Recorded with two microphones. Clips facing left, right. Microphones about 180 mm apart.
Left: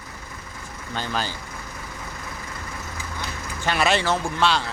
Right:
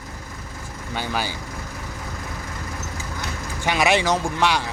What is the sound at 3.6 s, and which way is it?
Speech, 15° right (ahead or behind).